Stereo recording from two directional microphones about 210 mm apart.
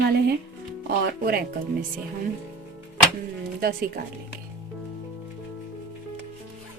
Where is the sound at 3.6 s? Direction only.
45° right (ahead or behind).